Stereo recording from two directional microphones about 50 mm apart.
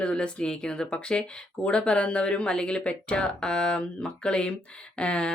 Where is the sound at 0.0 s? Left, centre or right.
Left.